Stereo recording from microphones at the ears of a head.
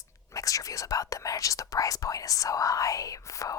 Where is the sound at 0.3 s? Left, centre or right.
Left.